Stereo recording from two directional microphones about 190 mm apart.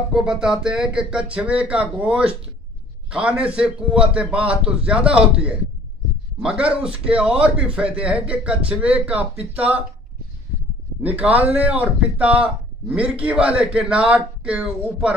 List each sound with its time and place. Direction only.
0.1 s a man's voice: 5° right (ahead or behind)
11.0 s a man's voice: 10° right (ahead or behind)